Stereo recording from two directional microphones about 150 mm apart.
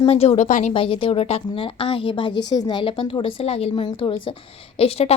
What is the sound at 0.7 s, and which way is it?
A woman's voice, 35° left (ahead or behind).